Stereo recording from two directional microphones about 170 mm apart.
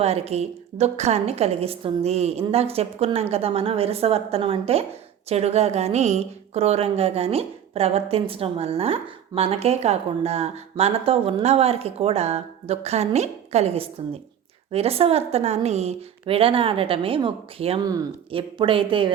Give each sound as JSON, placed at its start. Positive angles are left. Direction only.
{"t": 0.0, "sound": "a woman's voice", "side_deg": -35}